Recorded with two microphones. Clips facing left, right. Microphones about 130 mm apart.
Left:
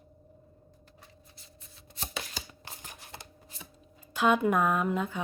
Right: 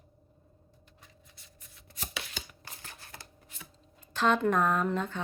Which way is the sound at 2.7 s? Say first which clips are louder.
Left 2 dB; 20° left (ahead or behind).